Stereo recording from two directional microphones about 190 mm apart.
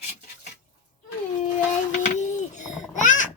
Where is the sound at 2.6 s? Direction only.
40° left (ahead or behind).